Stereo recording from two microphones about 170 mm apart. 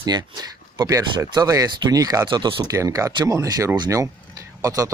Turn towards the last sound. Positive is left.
turn(degrees=-20)  # may be behind; listen again after turning